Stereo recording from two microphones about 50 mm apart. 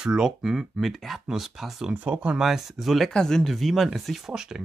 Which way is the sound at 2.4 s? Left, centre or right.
Centre.